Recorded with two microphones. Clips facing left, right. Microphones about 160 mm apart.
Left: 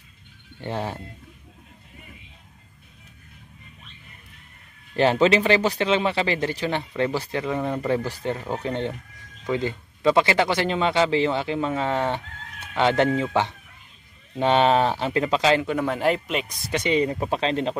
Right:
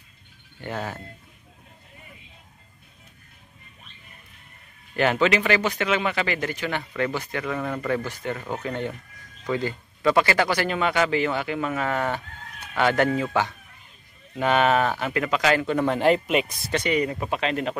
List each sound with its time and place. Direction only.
0.6 s speech: 30° left (ahead or behind)
4.9 s speech: 30° left (ahead or behind)
15.6 s speech: 5° left (ahead or behind)
16.7 s speech: 20° left (ahead or behind)